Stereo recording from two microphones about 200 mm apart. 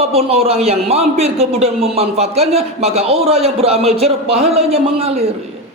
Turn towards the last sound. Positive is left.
turn(degrees=-30)  # may be behind; listen again after turning